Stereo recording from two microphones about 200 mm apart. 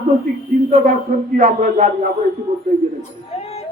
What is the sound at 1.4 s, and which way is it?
Speech, 40° right (ahead or behind).